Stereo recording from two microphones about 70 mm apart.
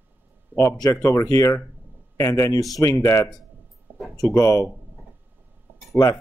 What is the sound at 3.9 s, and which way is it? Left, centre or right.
Music, right.